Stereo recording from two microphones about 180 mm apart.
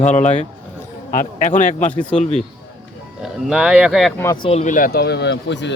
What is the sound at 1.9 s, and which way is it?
Speech, 5° left (ahead or behind).